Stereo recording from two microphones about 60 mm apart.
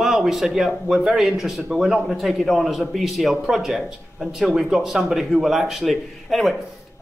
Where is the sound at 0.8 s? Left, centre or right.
Centre.